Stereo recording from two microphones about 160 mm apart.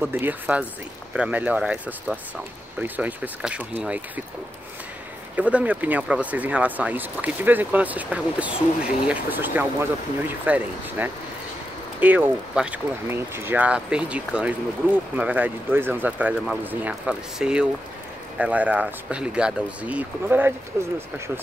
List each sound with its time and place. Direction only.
0.0 s speech: 10° right (ahead or behind)
5.3 s speech: 10° right (ahead or behind)